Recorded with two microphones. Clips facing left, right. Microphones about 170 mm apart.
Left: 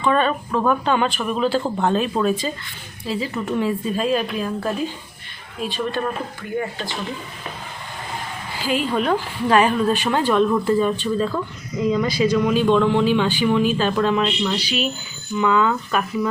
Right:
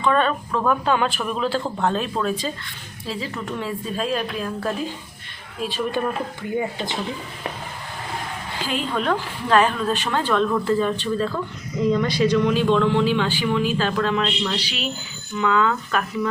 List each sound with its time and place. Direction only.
0.0 s speech: 5° left (ahead or behind)
6.6 s speech: 15° right (ahead or behind)
8.6 s speech: 5° left (ahead or behind)